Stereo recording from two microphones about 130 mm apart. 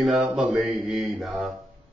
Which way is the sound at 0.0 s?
5° right (ahead or behind).